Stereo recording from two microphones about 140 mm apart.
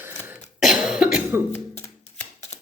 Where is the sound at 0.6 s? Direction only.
5° right (ahead or behind).